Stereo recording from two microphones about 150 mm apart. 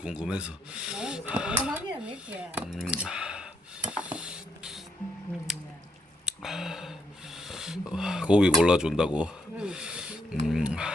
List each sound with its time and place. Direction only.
0.0 s speech: 5° right (ahead or behind)
1.6 s cutlery: 10° right (ahead or behind)
5.5 s squish: centre (ahead or behind)
6.2 s speech: centre (ahead or behind)